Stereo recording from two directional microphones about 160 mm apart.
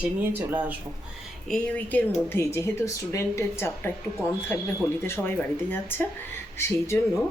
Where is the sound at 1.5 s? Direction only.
5° left (ahead or behind).